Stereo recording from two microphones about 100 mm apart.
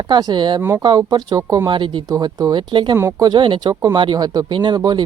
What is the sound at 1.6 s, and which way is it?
Speech, 50° right (ahead or behind).